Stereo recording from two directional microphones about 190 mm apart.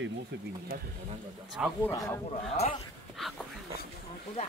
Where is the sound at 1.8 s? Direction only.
15° left (ahead or behind).